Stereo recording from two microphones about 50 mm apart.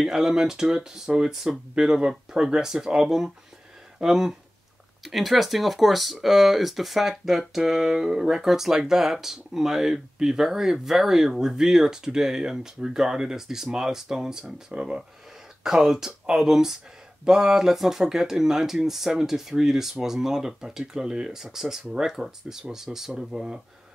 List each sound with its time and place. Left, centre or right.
0.0 s speech: centre